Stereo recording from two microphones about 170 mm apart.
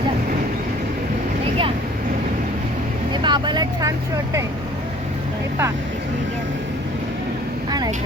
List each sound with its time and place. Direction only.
3.2 s vehicle: 25° right (ahead or behind)